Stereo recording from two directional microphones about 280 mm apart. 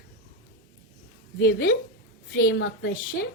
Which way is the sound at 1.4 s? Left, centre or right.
Left.